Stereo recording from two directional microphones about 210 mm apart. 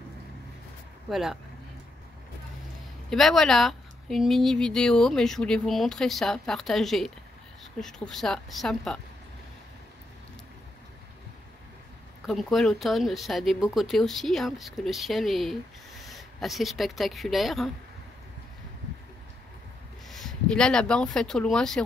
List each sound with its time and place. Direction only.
1.1 s a woman's voice: centre (ahead or behind)
3.1 s a woman's voice: centre (ahead or behind)
12.3 s a woman's voice: centre (ahead or behind)
20.1 s speech: centre (ahead or behind)